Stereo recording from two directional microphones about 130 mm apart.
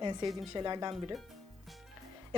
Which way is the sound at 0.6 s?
35° right (ahead or behind).